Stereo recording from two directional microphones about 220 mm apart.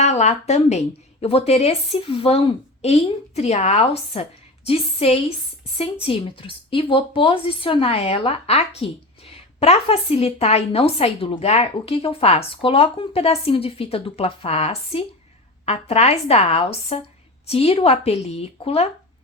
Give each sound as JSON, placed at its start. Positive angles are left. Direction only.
{"t": 0.0, "sound": "speech", "side_deg": 30}